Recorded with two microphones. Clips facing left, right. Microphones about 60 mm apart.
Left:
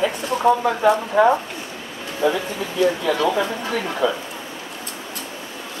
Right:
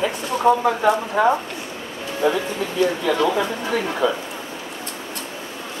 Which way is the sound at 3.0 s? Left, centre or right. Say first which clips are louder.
Even; centre.